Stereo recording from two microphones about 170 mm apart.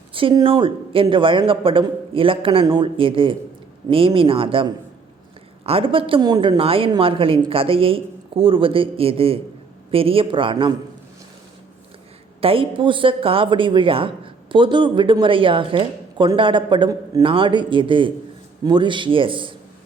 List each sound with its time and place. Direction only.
0.1 s a woman's voice: 30° right (ahead or behind)
12.4 s speech: 30° right (ahead or behind)